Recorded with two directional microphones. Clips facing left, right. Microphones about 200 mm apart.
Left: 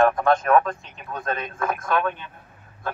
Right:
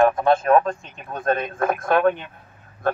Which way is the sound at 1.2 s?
55° right (ahead or behind).